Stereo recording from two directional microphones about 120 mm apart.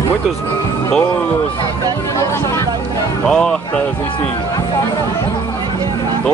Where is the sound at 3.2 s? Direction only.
5° left (ahead or behind).